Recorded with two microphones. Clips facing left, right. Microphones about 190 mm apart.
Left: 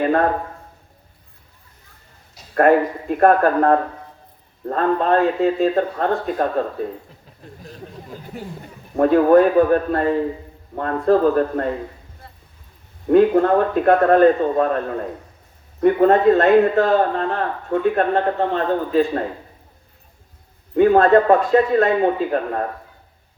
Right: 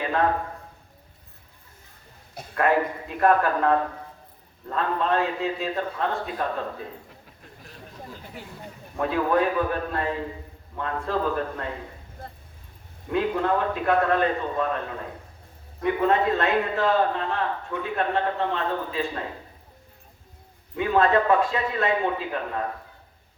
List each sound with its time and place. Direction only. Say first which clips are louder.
0.0 s a sound: left 7 dB; 50° left (ahead or behind)
2.3 s a sound: right 9 dB; 55° right (ahead or behind)
2.6 s speech: left 8 dB; 50° left (ahead or behind)
8.3 s speech: left 7 dB; 45° left (ahead or behind)
13.1 s speech: left 10 dB; 50° left (ahead or behind)
20.7 s speech: left 8 dB; 50° left (ahead or behind)